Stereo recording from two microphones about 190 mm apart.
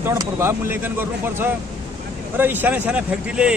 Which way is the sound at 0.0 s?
15° right (ahead or behind).